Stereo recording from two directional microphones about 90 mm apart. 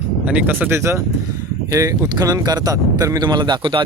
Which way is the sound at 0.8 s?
30° right (ahead or behind).